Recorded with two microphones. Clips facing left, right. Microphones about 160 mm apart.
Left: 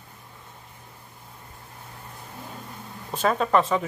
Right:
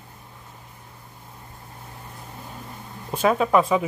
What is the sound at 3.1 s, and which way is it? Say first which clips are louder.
Speech: right 3 dB; 10° right (ahead or behind).